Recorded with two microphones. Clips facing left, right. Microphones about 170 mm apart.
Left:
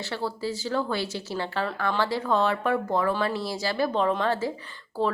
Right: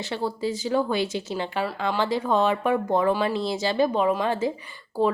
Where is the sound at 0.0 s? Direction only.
15° right (ahead or behind).